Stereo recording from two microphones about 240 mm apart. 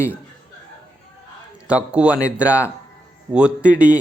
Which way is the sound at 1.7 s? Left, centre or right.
Centre.